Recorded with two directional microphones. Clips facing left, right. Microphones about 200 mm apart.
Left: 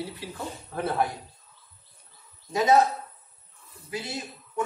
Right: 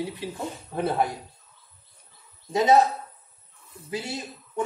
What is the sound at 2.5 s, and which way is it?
Speech, 25° right (ahead or behind).